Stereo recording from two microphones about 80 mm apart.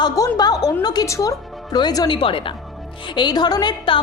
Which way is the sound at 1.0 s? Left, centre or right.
Left.